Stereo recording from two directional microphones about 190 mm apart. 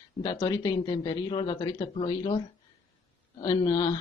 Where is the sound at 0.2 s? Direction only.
20° left (ahead or behind).